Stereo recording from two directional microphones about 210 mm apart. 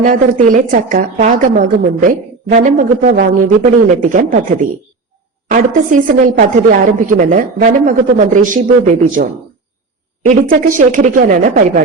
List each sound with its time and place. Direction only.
0.0 s a woman's voice: 40° right (ahead or behind)
5.5 s a woman's voice: 40° right (ahead or behind)
10.2 s a woman's voice: 40° right (ahead or behind)